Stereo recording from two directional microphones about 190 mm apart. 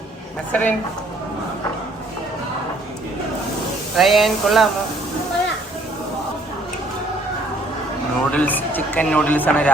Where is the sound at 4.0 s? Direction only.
Centre (ahead or behind).